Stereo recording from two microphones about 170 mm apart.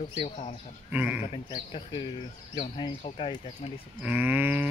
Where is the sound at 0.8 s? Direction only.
10° right (ahead or behind).